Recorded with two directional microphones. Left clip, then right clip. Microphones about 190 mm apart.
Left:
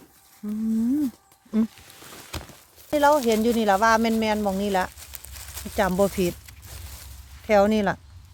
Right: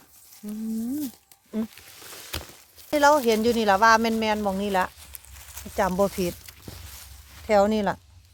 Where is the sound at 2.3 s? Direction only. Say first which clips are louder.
Right 2 dB; 65° right (ahead or behind).